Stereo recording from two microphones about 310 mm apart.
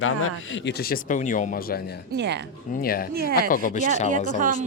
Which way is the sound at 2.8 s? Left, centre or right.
Left.